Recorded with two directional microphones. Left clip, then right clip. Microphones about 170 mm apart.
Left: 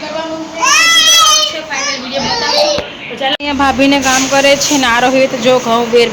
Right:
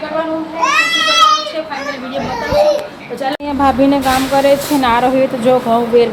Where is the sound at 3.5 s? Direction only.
5° right (ahead or behind).